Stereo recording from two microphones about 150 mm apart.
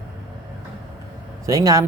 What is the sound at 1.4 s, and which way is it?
Speech, 25° right (ahead or behind).